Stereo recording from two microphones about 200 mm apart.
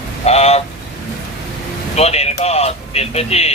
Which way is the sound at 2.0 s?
30° left (ahead or behind).